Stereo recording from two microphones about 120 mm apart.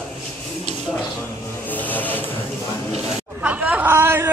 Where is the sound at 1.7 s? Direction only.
15° left (ahead or behind).